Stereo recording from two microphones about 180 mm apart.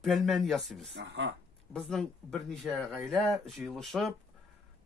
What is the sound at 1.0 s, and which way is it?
Speech, 90° right.